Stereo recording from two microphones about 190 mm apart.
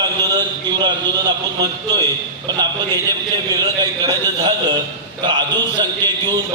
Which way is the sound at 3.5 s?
20° right (ahead or behind).